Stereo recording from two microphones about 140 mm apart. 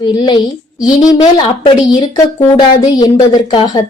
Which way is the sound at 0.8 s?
30° left (ahead or behind).